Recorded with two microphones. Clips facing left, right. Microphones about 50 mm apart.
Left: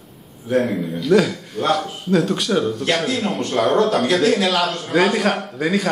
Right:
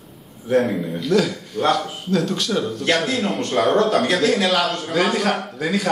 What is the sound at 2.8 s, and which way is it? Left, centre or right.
A man's voice, centre.